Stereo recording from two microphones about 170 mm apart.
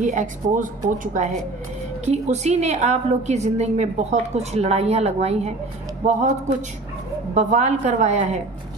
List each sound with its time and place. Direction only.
0.0 s a woman's voice: 50° right (ahead or behind)
7.3 s a woman's voice: 40° right (ahead or behind)